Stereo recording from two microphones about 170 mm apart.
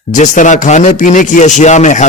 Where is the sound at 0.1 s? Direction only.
45° left (ahead or behind).